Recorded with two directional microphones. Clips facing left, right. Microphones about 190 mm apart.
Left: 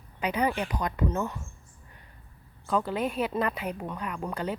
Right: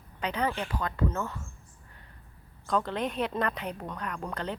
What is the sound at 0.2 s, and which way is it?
A woman's voice, 10° left (ahead or behind).